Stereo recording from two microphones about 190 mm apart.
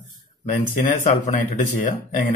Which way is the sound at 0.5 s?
40° left (ahead or behind).